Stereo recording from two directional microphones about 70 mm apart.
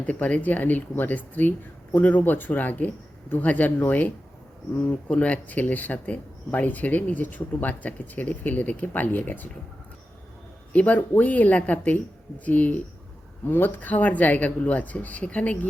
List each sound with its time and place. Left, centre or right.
0.0 s speech: left
10.7 s speech: left